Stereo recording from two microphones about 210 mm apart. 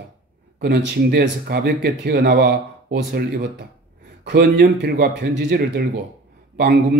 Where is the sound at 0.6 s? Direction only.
50° right (ahead or behind).